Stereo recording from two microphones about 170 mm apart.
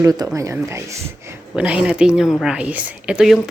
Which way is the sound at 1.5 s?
5° right (ahead or behind).